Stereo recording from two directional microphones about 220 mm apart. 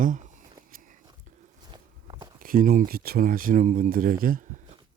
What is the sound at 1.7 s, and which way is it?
Walk, 20° right (ahead or behind).